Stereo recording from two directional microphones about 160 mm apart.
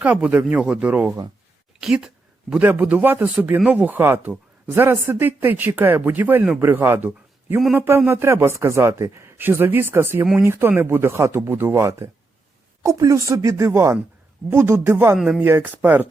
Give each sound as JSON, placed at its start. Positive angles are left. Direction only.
{"t": 0.0, "sound": "a man's voice", "side_deg": -10}